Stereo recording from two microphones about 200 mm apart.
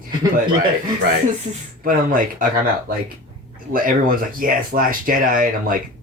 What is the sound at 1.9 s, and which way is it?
Speech, 45° right (ahead or behind).